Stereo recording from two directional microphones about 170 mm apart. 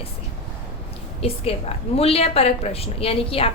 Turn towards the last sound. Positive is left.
turn(degrees=35)  # may be behind; listen again after turning